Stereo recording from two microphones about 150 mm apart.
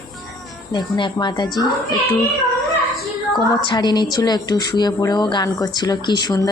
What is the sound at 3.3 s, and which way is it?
A woman's voice, 30° left (ahead or behind).